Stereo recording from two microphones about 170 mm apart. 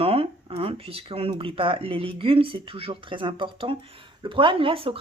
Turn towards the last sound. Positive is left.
turn(degrees=-30)  # may be behind; listen again after turning